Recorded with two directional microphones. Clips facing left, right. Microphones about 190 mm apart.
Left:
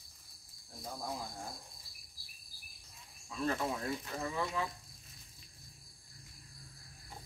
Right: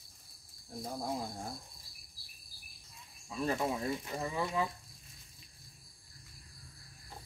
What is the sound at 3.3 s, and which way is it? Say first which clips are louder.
Speech: right 2 dB; 15° right (ahead or behind).